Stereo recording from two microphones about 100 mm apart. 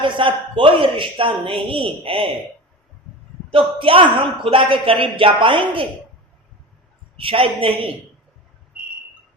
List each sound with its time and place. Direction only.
0.0 s a man's voice: 55° right (ahead or behind)
3.5 s a man's voice: 65° right (ahead or behind)
7.2 s a woman's voice: 65° right (ahead or behind)